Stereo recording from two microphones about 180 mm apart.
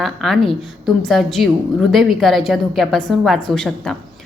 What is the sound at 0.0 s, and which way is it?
A woman's voice, centre (ahead or behind).